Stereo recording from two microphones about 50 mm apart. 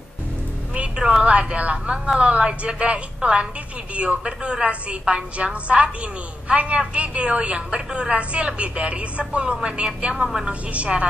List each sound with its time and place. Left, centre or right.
0.7 s music: centre
1.5 s a woman's voice: right
10.7 s a woman's voice: right